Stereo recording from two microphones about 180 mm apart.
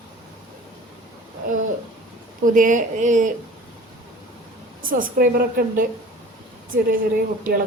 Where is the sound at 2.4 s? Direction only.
45° right (ahead or behind).